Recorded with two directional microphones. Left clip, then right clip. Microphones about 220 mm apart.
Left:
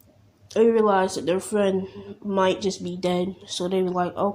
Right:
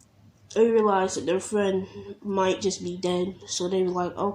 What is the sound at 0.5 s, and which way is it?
Speech, 20° left (ahead or behind).